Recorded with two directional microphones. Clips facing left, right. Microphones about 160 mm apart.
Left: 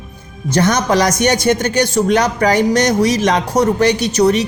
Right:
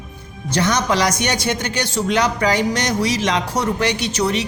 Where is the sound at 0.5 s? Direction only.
45° left (ahead or behind).